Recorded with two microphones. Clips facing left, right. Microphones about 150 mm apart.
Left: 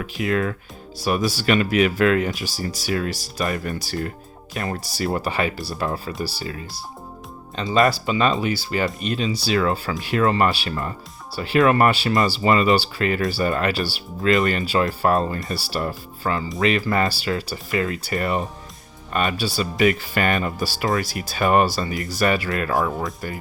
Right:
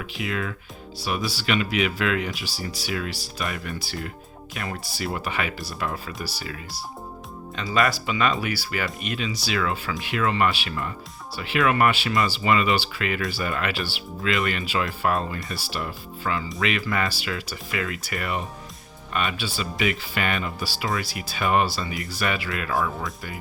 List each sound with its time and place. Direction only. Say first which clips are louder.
0.0 s speech: left 7 dB; 45° left (ahead or behind)
7.6 s speech: left 5 dB; 25° left (ahead or behind)